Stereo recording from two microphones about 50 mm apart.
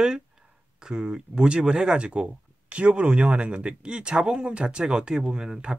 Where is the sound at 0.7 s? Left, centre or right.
Centre.